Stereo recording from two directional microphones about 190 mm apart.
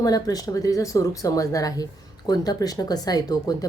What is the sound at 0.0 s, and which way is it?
Speech, 20° left (ahead or behind).